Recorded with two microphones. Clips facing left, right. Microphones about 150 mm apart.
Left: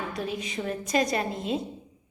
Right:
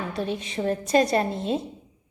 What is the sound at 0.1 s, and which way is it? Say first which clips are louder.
A woman's voice: right 3 dB; 30° right (ahead or behind).